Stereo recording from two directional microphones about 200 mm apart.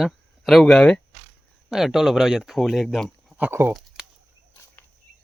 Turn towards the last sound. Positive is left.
turn(degrees=-10)  # may be behind; listen again after turning